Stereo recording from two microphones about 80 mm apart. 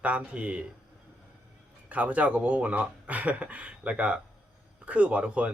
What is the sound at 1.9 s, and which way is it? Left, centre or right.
Speech, centre.